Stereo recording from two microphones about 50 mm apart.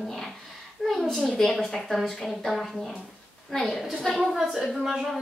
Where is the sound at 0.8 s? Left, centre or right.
Centre.